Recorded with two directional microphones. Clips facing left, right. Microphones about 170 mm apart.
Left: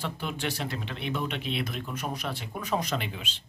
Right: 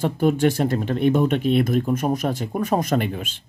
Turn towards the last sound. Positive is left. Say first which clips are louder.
# right 10 dB
turn(degrees=-50)  # may be behind; listen again after turning